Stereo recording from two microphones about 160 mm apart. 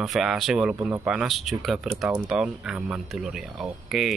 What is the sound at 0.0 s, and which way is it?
Speech, centre (ahead or behind).